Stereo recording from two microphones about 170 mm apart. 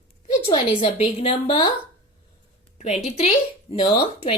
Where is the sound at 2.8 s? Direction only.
40° left (ahead or behind).